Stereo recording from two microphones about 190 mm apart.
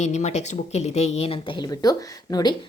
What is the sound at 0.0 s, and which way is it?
Speech, 40° left (ahead or behind).